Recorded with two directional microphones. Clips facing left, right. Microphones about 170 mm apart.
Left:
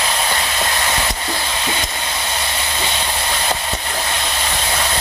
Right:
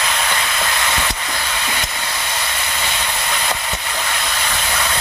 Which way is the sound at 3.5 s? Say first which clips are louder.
Left 2 dB; 30° left (ahead or behind).